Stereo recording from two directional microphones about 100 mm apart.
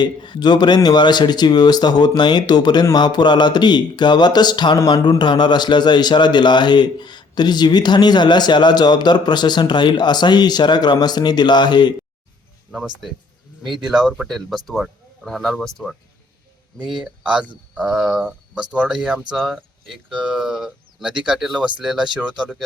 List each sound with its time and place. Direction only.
0.0 s a man's voice: 50° left (ahead or behind)
12.7 s speech: centre (ahead or behind)
17.0 s speech: 10° right (ahead or behind)